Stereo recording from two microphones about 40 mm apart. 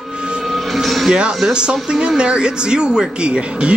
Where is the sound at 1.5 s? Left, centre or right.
Right.